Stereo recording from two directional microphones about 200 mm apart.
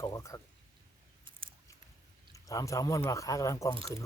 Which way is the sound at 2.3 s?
15° left (ahead or behind).